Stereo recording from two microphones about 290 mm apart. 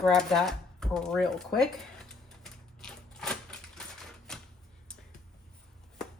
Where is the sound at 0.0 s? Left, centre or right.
Centre.